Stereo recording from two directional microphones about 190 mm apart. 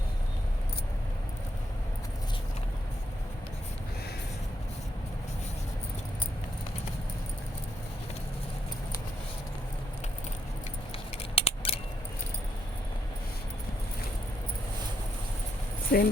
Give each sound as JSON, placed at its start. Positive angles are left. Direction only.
{"t": 11.3, "sound": "scissors", "side_deg": 30}
{"t": 15.9, "sound": "speech", "side_deg": 50}